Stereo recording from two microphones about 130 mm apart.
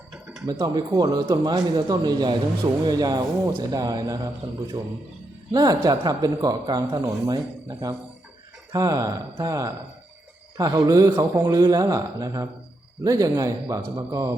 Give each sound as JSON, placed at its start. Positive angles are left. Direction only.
{"t": 0.6, "sound": "a man's voice", "side_deg": -30}
{"t": 5.5, "sound": "speech", "side_deg": -30}